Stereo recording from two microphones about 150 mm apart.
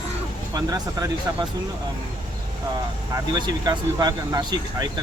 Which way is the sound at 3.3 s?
30° right (ahead or behind).